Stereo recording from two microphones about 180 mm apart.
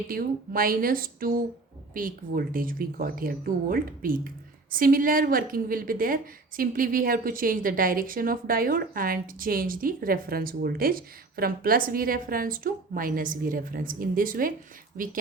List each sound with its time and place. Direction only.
0.1 s a woman's voice: 55° right (ahead or behind)